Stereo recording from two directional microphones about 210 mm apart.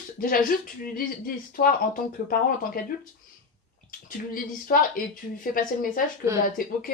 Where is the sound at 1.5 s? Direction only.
40° left (ahead or behind).